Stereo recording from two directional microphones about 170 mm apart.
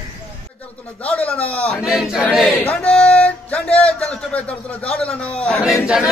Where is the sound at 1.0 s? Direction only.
10° left (ahead or behind).